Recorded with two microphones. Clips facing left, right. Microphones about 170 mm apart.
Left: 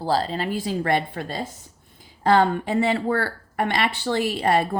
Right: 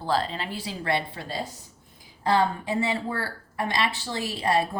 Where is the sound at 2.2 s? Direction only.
65° left (ahead or behind).